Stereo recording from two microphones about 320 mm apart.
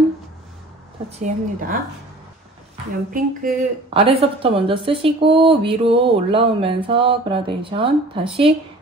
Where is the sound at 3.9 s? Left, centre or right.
Centre.